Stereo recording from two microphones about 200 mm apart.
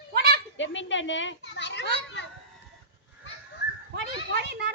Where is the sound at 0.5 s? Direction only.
70° left (ahead or behind).